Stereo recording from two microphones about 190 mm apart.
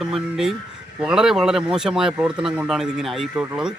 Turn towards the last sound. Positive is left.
turn(degrees=-5)  # may be behind; listen again after turning